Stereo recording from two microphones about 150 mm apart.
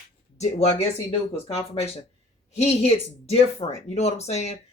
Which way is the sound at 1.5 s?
45° left (ahead or behind).